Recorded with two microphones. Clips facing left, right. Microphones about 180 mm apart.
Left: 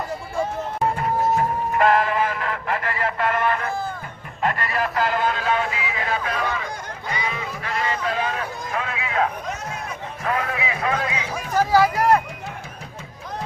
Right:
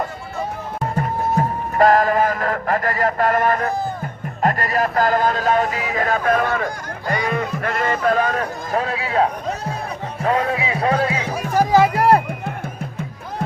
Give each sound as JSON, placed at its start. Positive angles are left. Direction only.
{"t": 0.9, "sound": "music", "side_deg": -40}
{"t": 4.4, "sound": "a sound", "side_deg": -40}
{"t": 7.1, "sound": "music", "side_deg": -50}
{"t": 7.6, "sound": "sheep", "side_deg": -50}
{"t": 10.2, "sound": "a sound", "side_deg": -30}
{"t": 11.3, "sound": "music", "side_deg": -15}